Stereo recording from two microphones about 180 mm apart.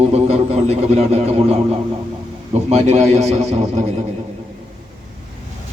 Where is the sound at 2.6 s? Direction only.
35° right (ahead or behind).